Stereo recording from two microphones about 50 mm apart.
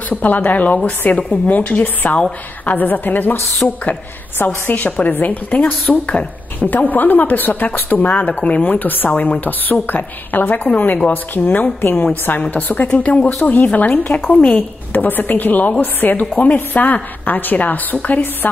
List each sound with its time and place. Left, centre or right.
0.1 s a woman's voice: left
3.6 s a woman's voice: left
4.6 s a woman's voice: left
8.6 s a woman's voice: left
9.1 s a woman's voice: left
9.4 s a woman's voice: left
12.4 s a woman's voice: left